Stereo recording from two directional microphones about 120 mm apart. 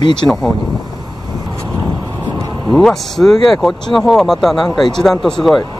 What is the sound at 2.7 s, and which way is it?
Speech, 5° left (ahead or behind).